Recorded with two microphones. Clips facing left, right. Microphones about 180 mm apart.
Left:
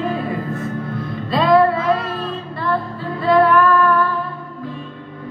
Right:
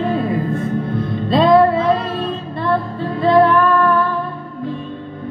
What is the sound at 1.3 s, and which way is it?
Music, 25° right (ahead or behind).